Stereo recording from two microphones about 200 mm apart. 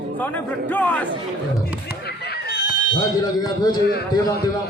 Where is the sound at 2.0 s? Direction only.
55° left (ahead or behind).